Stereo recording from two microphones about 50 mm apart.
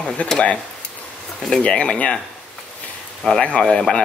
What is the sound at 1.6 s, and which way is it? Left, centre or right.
Speech, left.